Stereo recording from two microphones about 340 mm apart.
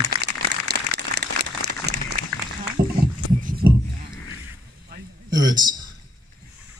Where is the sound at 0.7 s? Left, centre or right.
Right.